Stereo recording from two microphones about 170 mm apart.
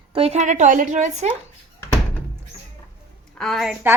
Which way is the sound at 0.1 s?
35° right (ahead or behind).